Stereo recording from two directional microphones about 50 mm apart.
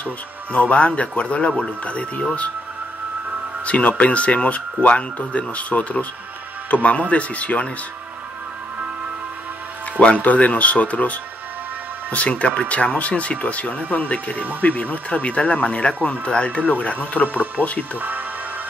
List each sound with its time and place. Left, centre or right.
0.0 s speech: left
3.6 s speech: left
9.9 s speech: left